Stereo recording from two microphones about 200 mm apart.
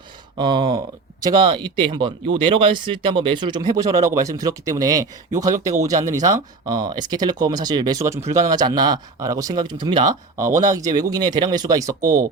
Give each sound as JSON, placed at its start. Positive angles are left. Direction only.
{"t": 0.3, "sound": "speech", "side_deg": -25}